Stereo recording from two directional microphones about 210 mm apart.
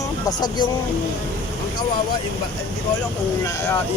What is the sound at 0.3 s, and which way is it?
Speech, 20° left (ahead or behind).